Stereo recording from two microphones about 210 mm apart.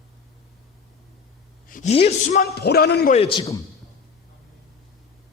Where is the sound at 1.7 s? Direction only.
35° left (ahead or behind).